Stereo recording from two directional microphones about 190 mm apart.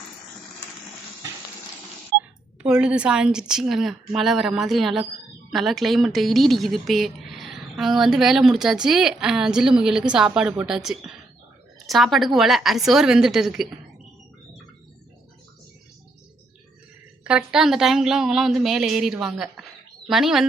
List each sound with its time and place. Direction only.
2.1 s a sound: 60° right (ahead or behind)
2.6 s a woman's voice: 5° right (ahead or behind)
17.2 s a woman's voice: 5° right (ahead or behind)